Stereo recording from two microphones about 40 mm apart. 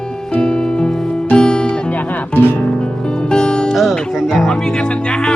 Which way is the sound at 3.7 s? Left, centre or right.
Centre.